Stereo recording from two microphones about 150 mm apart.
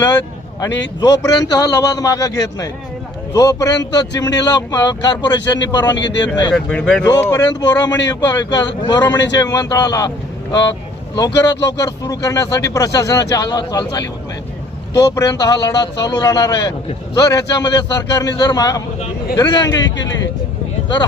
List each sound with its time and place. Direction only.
0.6 s speech: 25° left (ahead or behind)
6.5 s speech: 5° left (ahead or behind)
7.2 s speech: 15° left (ahead or behind)
7.4 s speech: 25° left (ahead or behind)
11.1 s speech: 25° left (ahead or behind)